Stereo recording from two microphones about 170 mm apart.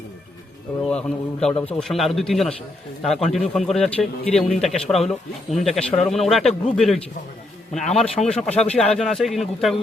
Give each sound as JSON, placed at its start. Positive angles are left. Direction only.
{"t": 0.9, "sound": "speech", "side_deg": 5}
{"t": 8.0, "sound": "speech", "side_deg": 35}
{"t": 8.3, "sound": "speech", "side_deg": 5}